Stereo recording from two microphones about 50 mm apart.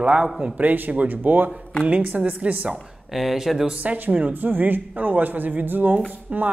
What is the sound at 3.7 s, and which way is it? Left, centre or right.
Speech, right.